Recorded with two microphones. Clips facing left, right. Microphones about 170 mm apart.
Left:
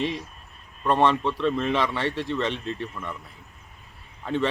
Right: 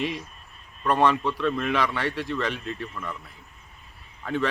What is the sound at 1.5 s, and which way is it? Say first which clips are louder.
Speech: left 1 dB; 30° left (ahead or behind).